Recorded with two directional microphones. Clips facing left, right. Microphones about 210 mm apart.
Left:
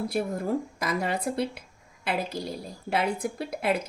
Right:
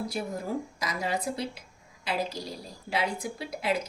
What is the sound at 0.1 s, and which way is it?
A woman's voice, 55° left (ahead or behind).